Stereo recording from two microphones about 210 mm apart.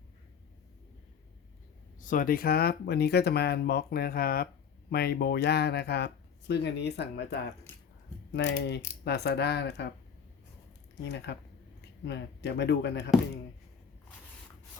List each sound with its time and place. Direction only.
2.0 s speech: 40° left (ahead or behind)
11.0 s speech: 55° left (ahead or behind)